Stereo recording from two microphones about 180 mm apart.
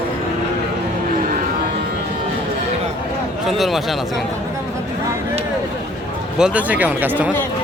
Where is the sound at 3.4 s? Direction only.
Centre (ahead or behind).